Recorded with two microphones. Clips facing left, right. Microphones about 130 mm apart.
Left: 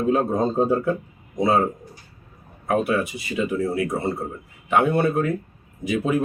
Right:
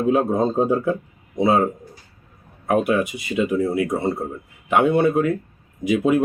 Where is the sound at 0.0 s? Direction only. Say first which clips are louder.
Right 2 dB; 10° right (ahead or behind).